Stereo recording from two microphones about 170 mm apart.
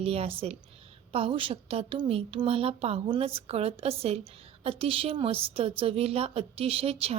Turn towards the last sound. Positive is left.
turn(degrees=-35)  # may be behind; listen again after turning